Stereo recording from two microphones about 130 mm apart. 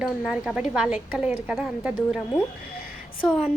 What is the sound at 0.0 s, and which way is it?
A woman's voice, 5° right (ahead or behind).